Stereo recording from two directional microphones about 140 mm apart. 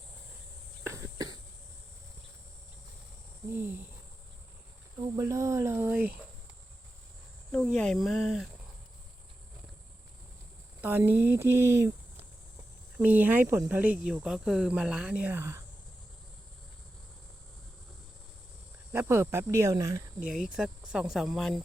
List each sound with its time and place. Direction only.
0.9 s cough: 25° right (ahead or behind)
3.5 s speech: 15° right (ahead or behind)
5.1 s speech: 20° right (ahead or behind)
7.5 s speech: 5° left (ahead or behind)
10.8 s speech: 15° right (ahead or behind)
13.0 s speech: 10° right (ahead or behind)
18.9 s speech: 20° right (ahead or behind)
20.1 s speech: 5° right (ahead or behind)